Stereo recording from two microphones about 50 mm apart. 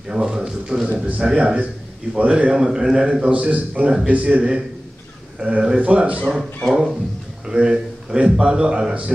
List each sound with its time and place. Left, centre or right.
0.1 s a man's voice: centre
0.5 s a man's voice: centre
0.8 s a man's voice: right
6.7 s a man's voice: centre